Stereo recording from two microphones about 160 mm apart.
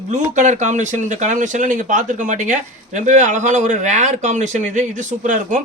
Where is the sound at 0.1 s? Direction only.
50° right (ahead or behind).